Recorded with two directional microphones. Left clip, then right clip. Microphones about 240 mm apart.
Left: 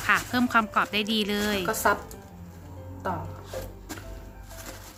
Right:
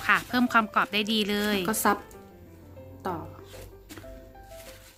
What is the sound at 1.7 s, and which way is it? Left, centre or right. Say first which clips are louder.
Speech: left 2 dB; right.